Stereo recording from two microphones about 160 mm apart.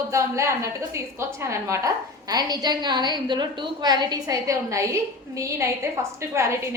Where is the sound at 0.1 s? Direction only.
20° right (ahead or behind).